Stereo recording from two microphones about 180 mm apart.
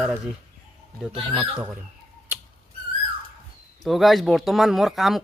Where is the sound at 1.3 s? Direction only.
5° right (ahead or behind).